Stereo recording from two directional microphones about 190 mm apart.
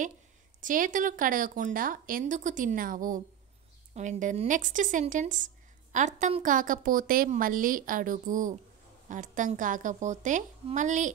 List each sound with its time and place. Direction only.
0.6 s a woman's voice: 45° right (ahead or behind)